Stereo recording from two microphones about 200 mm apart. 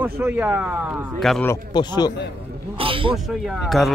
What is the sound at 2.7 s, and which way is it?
Speech, 25° right (ahead or behind).